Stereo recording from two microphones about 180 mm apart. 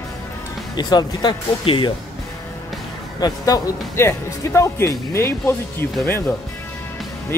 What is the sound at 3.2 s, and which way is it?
Speech, 20° left (ahead or behind).